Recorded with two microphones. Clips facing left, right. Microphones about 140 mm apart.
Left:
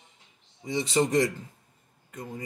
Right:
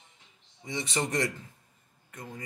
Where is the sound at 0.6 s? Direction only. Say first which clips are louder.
Left 7 dB; 25° left (ahead or behind).